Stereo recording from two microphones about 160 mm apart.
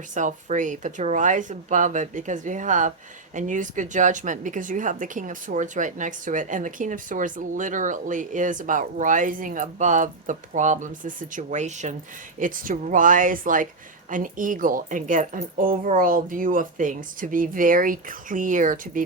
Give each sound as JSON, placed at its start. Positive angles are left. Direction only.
{"t": 0.1, "sound": "a woman's voice", "side_deg": -50}
{"t": 12.4, "sound": "speech", "side_deg": -60}